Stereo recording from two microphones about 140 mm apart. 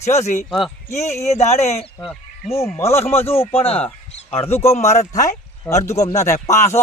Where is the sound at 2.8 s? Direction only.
20° left (ahead or behind).